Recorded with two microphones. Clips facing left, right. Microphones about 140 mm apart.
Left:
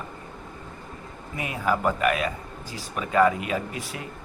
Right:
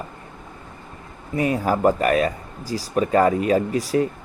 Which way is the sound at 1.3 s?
40° right (ahead or behind).